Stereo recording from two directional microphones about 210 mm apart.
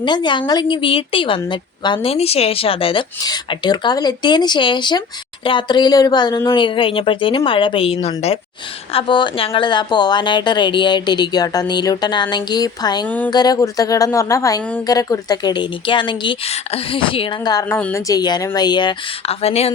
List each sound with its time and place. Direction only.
0.0 s a woman's voice: 20° left (ahead or behind)
13.1 s speech: 5° left (ahead or behind)
13.3 s a woman's voice: 20° left (ahead or behind)
18.1 s a woman's voice: 20° left (ahead or behind)